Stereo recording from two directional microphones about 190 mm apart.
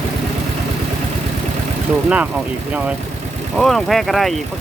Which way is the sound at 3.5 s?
Centre (ahead or behind).